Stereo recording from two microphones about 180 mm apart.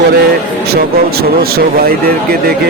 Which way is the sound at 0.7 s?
60° right (ahead or behind).